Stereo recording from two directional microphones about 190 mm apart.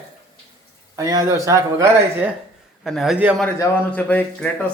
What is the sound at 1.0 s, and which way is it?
Speech, 20° right (ahead or behind).